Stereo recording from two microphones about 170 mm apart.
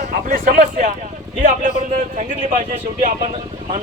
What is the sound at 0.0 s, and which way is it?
Speech, 60° right (ahead or behind).